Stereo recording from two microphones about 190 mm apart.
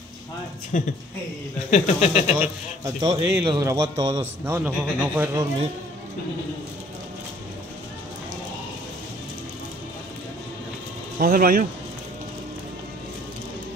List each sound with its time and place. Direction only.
0.7 s speech: 40° left (ahead or behind)
2.4 s a man's voice: 15° right (ahead or behind)
4.5 s speech: 10° right (ahead or behind)
11.1 s speech: 50° right (ahead or behind)